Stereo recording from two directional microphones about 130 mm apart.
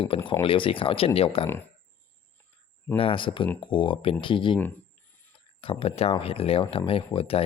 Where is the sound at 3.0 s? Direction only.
40° left (ahead or behind).